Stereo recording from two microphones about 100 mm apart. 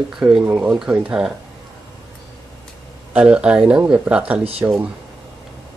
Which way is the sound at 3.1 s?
10° right (ahead or behind).